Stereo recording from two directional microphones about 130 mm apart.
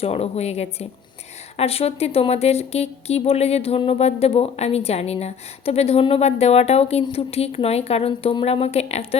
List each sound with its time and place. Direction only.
0.0 s a woman's voice: 55° left (ahead or behind)